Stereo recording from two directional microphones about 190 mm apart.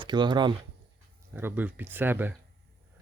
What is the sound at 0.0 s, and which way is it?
Speech, 25° right (ahead or behind).